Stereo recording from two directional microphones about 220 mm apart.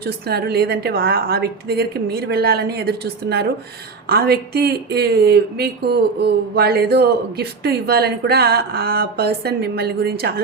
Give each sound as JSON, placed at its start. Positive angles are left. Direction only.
{"t": 0.0, "sound": "speech", "side_deg": -45}